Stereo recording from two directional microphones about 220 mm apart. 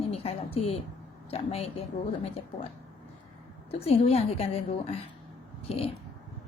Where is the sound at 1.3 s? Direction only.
25° left (ahead or behind).